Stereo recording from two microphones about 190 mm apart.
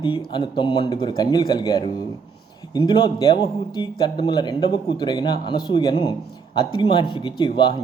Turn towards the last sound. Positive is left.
turn(degrees=25)  # may be behind; listen again after turning